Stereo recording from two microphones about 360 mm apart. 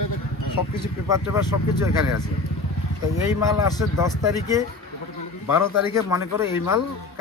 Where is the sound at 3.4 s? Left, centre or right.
Centre.